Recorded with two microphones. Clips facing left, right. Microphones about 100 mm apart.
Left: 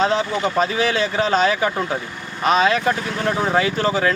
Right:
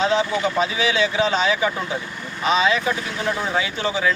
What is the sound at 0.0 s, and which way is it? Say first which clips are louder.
A man's voice: left 1 dB; 40° left (ahead or behind).